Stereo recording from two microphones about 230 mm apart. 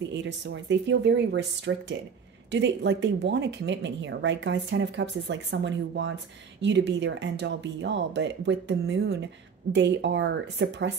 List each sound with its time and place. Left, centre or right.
0.1 s speech: right